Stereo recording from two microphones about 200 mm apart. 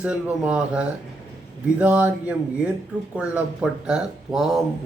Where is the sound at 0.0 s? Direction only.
5° right (ahead or behind).